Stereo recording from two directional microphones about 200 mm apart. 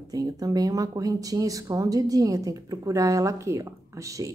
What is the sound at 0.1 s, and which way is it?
Speech, 20° right (ahead or behind).